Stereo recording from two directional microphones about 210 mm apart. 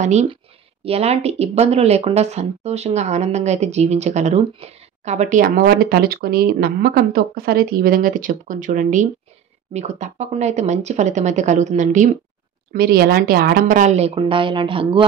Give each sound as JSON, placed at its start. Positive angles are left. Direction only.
{"t": 0.0, "sound": "speech", "side_deg": -30}
{"t": 12.7, "sound": "speech", "side_deg": -45}